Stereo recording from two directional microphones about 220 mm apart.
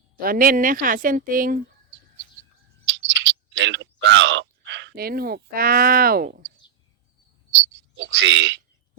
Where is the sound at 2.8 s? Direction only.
55° right (ahead or behind).